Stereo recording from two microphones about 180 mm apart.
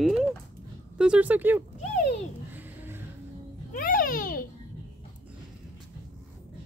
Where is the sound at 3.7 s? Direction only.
50° left (ahead or behind).